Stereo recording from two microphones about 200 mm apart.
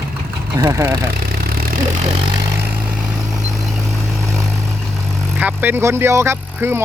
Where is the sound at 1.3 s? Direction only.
50° right (ahead or behind).